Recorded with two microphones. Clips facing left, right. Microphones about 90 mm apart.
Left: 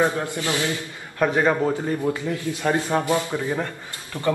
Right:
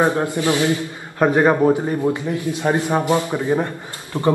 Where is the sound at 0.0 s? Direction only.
20° right (ahead or behind).